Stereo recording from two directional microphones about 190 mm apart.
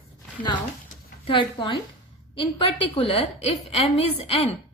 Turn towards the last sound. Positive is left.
turn(degrees=30)  # may be behind; listen again after turning